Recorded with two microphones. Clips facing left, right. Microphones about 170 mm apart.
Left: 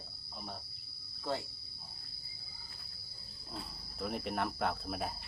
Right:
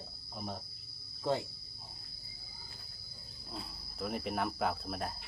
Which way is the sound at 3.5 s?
Centre (ahead or behind).